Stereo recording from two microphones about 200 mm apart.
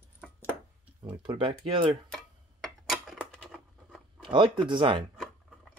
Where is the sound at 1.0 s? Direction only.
25° right (ahead or behind).